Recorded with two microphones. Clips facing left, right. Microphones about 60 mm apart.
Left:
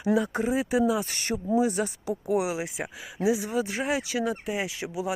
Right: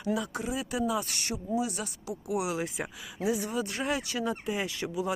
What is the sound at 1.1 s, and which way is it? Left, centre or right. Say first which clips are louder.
Speech: left 6 dB; left.